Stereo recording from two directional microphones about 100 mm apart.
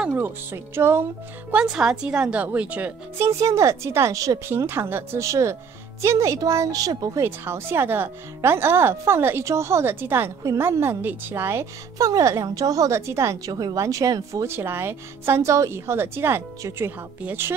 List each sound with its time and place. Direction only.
0.1 s a woman's voice: 25° right (ahead or behind)
1.5 s a woman's voice: 10° right (ahead or behind)
3.2 s a woman's voice: 30° right (ahead or behind)
4.5 s speech: 25° right (ahead or behind)
7.2 s a woman's voice: 25° right (ahead or behind)